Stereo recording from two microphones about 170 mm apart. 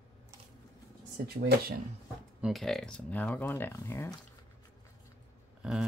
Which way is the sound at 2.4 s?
Centre (ahead or behind).